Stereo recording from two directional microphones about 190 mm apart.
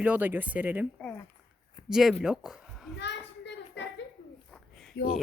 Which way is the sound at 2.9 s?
65° left (ahead or behind).